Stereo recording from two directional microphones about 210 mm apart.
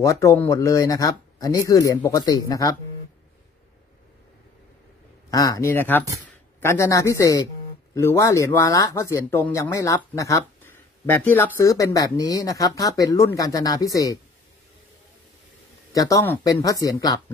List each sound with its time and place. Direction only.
0.0 s speech: 15° left (ahead or behind)
5.3 s speech: 15° left (ahead or behind)
15.9 s speech: 15° left (ahead or behind)